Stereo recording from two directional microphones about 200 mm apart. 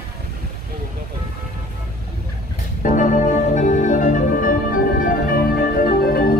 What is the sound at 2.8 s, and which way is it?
Organ, 40° left (ahead or behind).